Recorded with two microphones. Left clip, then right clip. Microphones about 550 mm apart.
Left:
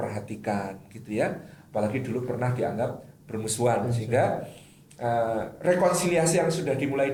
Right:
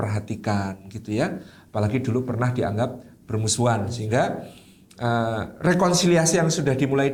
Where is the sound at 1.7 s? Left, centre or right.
Right.